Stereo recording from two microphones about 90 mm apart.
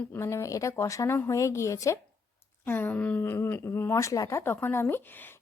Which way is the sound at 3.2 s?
25° left (ahead or behind).